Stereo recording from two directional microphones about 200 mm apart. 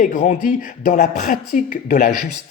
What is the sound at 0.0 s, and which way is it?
Speech, 40° left (ahead or behind).